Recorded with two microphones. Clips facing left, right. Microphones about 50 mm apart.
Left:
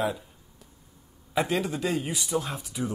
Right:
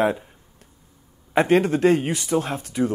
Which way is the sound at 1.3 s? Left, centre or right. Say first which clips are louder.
Right 9 dB; right.